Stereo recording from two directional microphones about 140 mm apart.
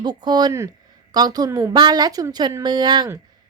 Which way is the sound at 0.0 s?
30° right (ahead or behind).